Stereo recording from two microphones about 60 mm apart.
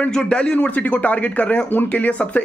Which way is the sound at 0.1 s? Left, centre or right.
Centre.